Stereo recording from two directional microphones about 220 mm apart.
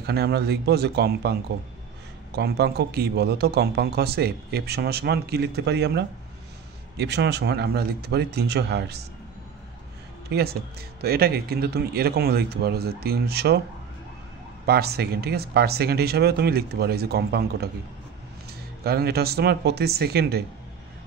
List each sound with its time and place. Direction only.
0.0 s speech: 45° right (ahead or behind)
2.3 s speech: 45° right (ahead or behind)
10.3 s speech: 45° right (ahead or behind)
14.7 s speech: 45° right (ahead or behind)
18.9 s speech: 45° right (ahead or behind)